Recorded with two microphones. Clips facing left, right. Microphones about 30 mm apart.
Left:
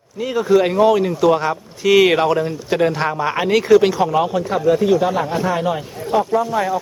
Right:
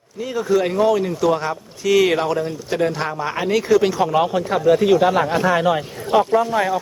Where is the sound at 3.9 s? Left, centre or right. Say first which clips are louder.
Left 1 dB; centre.